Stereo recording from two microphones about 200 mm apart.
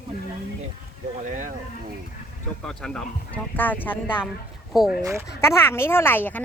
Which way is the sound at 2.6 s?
5° left (ahead or behind).